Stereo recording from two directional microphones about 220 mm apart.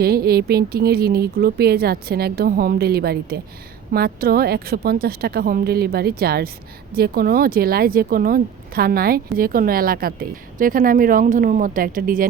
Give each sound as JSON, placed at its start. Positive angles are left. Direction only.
{"t": 0.0, "sound": "speech", "side_deg": -45}